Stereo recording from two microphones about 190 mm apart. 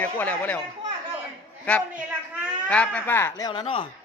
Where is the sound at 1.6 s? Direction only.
10° left (ahead or behind).